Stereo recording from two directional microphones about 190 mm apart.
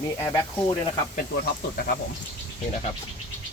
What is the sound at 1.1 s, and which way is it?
Speech, 55° left (ahead or behind).